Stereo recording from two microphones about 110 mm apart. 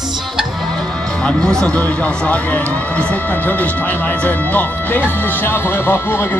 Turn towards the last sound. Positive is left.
turn(degrees=20)  # may be behind; listen again after turning